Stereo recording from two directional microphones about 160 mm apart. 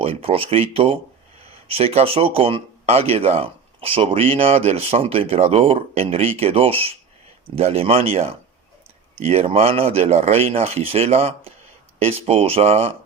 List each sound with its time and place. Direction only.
0.0 s speech: 35° right (ahead or behind)